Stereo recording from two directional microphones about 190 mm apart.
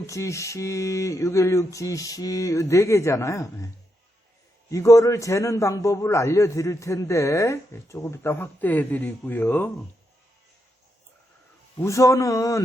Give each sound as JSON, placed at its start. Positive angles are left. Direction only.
{"t": 0.0, "sound": "a man's voice", "side_deg": 15}
{"t": 4.7, "sound": "a man's voice", "side_deg": 15}
{"t": 11.8, "sound": "a man's voice", "side_deg": 15}